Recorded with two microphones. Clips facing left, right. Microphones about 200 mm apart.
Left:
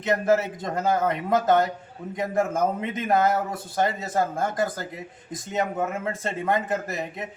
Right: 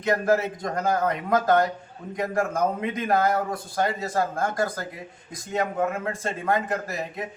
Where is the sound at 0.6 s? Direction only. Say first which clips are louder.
Left 1 dB; 25° left (ahead or behind).